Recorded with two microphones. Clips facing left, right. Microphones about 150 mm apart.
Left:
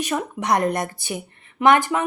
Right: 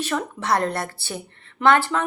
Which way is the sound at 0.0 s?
15° left (ahead or behind).